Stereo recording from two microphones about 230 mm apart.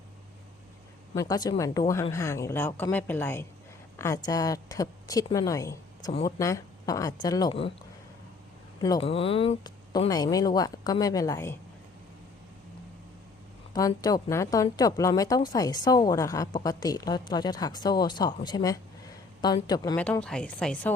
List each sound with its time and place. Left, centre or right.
1.1 s speech: centre
8.8 s speech: left
13.7 s speech: centre
20.0 s a woman's voice: centre